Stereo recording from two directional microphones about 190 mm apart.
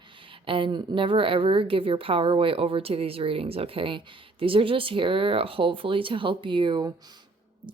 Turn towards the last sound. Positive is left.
turn(degrees=-20)  # may be behind; listen again after turning